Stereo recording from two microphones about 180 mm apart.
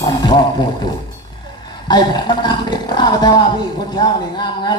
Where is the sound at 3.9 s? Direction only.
25° left (ahead or behind).